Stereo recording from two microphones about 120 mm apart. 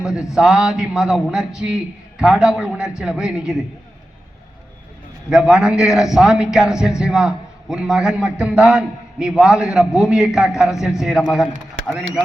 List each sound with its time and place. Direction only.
0.1 s a man's voice: 25° left (ahead or behind)
0.3 s a man's voice: 5° right (ahead or behind)
5.3 s a man's voice: 5° right (ahead or behind)